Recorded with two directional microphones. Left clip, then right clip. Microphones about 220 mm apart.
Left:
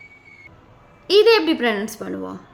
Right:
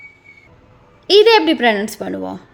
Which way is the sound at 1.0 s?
15° right (ahead or behind).